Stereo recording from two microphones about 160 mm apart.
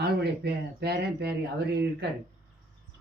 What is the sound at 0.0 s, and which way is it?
Speech, 85° right.